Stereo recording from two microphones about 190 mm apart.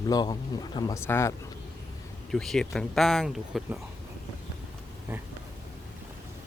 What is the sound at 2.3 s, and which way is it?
Speech, centre (ahead or behind).